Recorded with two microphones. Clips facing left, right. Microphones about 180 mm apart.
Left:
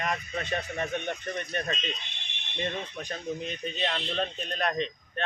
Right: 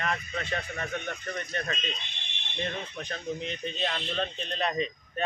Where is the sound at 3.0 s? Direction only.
10° left (ahead or behind).